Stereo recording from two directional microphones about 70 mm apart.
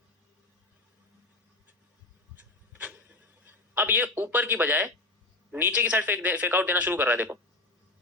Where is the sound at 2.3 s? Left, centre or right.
Right.